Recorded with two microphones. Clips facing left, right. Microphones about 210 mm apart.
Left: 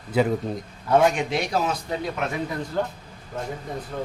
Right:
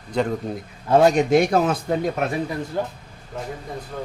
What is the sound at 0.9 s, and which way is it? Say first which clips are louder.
A man's voice: right 5 dB; 35° right (ahead or behind).